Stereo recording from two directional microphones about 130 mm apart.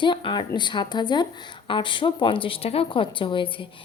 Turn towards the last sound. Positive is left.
turn(degrees=40)  # may be behind; listen again after turning